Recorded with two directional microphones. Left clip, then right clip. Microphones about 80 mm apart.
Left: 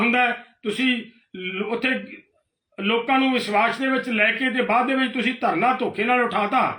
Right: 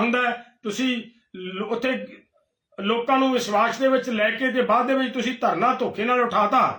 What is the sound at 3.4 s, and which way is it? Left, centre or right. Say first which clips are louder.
A man's voice: even; right.